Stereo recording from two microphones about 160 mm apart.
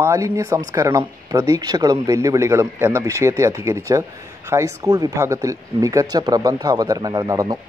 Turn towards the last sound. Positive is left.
turn(degrees=-25)  # may be behind; listen again after turning